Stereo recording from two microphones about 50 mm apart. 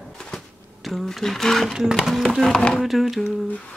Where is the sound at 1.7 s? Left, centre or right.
Centre.